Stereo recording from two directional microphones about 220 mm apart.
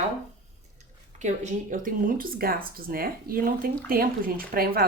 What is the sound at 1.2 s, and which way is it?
A woman's voice, 35° right (ahead or behind).